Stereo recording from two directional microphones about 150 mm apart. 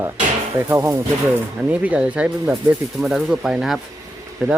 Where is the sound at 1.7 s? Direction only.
10° right (ahead or behind).